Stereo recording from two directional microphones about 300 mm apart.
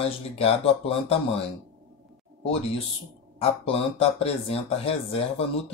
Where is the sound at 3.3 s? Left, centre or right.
Centre.